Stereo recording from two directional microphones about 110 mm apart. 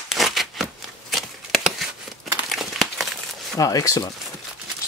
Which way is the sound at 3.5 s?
30° left (ahead or behind).